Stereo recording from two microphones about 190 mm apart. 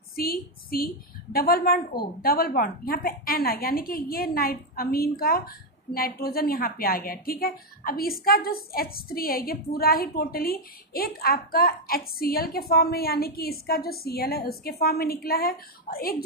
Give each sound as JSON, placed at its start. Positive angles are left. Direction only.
{"t": 0.1, "sound": "a woman's voice", "side_deg": 50}